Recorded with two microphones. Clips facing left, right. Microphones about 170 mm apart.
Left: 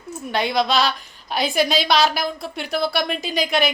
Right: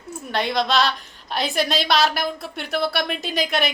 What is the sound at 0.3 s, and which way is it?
A woman's voice, centre (ahead or behind).